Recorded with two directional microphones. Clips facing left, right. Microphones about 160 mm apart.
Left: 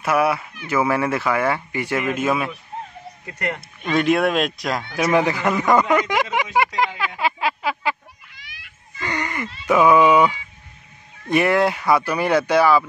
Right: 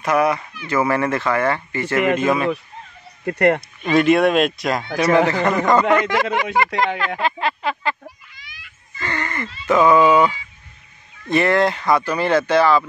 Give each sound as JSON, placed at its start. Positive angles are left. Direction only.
{"t": 0.0, "sound": "speech", "side_deg": 5}
{"t": 3.3, "sound": "speech", "side_deg": -60}
{"t": 3.8, "sound": "speech", "side_deg": 0}
{"t": 5.3, "sound": "speech", "side_deg": 10}
{"t": 8.3, "sound": "children playing", "side_deg": 65}
{"t": 9.0, "sound": "speech", "side_deg": 15}